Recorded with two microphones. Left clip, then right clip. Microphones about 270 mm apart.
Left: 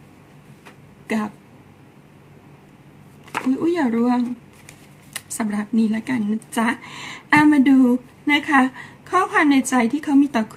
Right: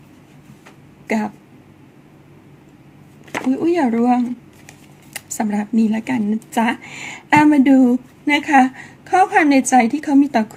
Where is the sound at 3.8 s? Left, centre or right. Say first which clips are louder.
Right 4 dB; centre.